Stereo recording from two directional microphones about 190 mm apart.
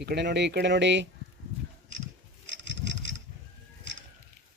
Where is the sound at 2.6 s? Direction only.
70° right (ahead or behind).